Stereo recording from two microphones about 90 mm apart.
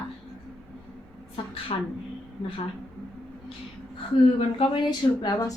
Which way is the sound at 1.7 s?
90° left.